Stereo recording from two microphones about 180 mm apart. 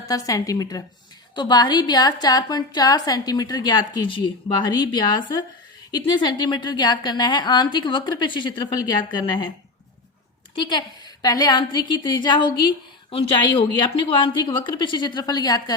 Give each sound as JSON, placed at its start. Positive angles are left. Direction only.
{"t": 0.1, "sound": "a woman's voice", "side_deg": 20}
{"t": 6.0, "sound": "a woman's voice", "side_deg": 25}
{"t": 10.5, "sound": "a woman's voice", "side_deg": 25}